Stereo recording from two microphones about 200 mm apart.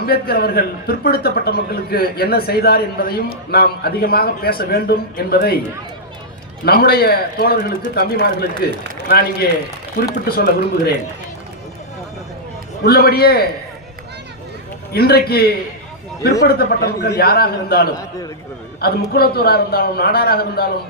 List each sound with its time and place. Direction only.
0.0 s a man's voice: 50° left (ahead or behind)
6.7 s a man's voice: 50° left (ahead or behind)
12.8 s a man's voice: 50° left (ahead or behind)
14.9 s a man's voice: 50° left (ahead or behind)